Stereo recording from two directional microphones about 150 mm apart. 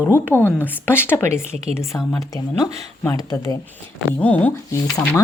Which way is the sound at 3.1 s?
25° left (ahead or behind).